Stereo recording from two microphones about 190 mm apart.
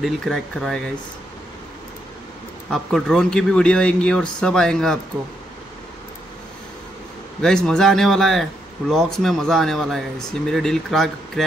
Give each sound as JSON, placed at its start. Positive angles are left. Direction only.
{"t": 0.0, "sound": "speech", "side_deg": 0}
{"t": 2.7, "sound": "speech", "side_deg": 0}
{"t": 7.4, "sound": "speech", "side_deg": 5}